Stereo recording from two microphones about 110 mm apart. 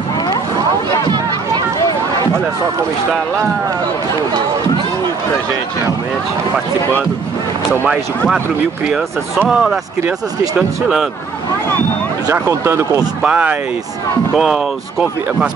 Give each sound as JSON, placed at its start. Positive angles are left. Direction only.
{"t": 9.5, "sound": "speech", "side_deg": -5}
{"t": 12.3, "sound": "speech", "side_deg": -25}
{"t": 13.2, "sound": "speech", "side_deg": -10}